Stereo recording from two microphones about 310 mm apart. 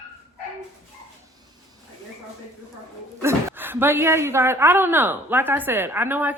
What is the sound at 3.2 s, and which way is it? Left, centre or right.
A woman's voice, centre.